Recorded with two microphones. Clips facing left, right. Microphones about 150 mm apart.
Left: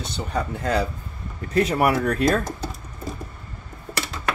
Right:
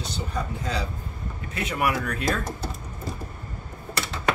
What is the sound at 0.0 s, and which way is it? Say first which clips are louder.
Speech: left 4 dB; 60° left (ahead or behind).